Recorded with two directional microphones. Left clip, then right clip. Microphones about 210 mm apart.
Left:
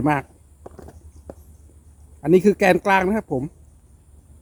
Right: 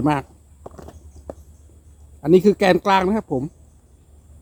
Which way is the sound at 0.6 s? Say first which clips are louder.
Right 2 dB; 30° right (ahead or behind).